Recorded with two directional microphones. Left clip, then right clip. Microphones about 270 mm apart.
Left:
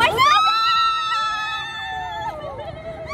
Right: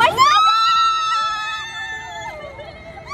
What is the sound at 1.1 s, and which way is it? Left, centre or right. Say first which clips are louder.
Music: right 2 dB; left.